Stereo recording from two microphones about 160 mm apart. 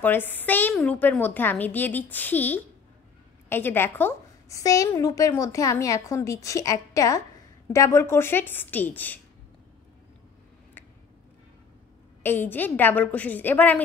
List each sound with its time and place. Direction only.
0.0 s a woman's voice: 10° left (ahead or behind)
12.2 s a woman's voice: 15° left (ahead or behind)